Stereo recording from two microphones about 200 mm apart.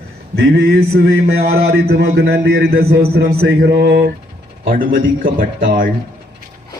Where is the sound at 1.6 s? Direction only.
50° right (ahead or behind).